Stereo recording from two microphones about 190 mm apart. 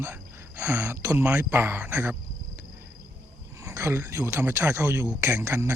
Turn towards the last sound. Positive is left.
turn(degrees=-15)  # may be behind; listen again after turning